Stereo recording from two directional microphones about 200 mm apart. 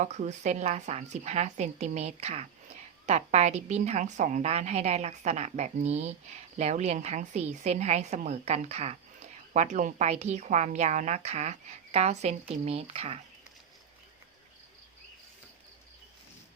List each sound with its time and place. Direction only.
0.0 s a woman's voice: 35° right (ahead or behind)